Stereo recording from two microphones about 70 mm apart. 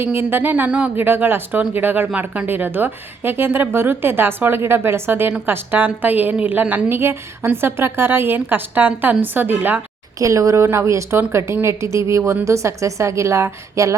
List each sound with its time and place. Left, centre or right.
0.0 s a woman's voice: right
0.5 s speech: centre
0.9 s a woman's voice: right
6.9 s a woman's voice: right
10.2 s a woman's voice: right